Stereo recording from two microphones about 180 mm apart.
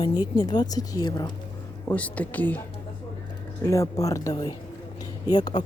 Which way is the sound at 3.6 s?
15° left (ahead or behind).